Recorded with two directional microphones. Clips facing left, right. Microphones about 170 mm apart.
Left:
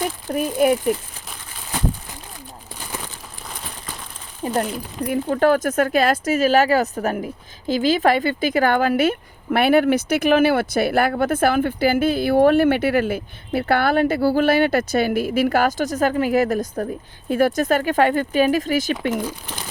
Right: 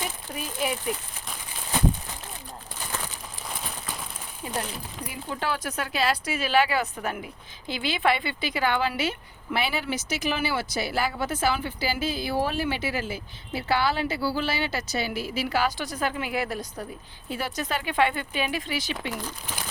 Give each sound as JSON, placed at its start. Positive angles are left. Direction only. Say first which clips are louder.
{"t": 0.3, "sound": "speech", "louder": "left 14 dB", "side_deg": 50}
{"t": 4.4, "sound": "speech", "louder": "left 10 dB", "side_deg": 45}